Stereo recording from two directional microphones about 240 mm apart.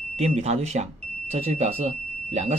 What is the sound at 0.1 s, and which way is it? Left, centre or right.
Speech, right.